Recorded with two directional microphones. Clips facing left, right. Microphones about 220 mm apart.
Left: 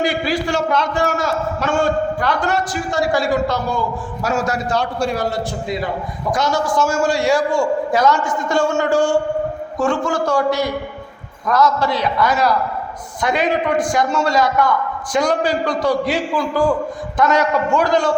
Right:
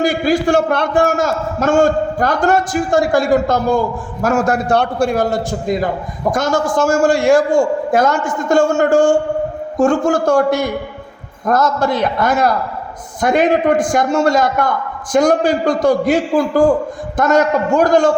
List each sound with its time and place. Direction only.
0.0 s a man's voice: 45° right (ahead or behind)